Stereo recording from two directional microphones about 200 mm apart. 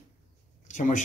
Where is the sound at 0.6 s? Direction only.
40° left (ahead or behind).